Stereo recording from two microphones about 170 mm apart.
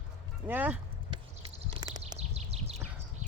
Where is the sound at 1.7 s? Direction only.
25° right (ahead or behind).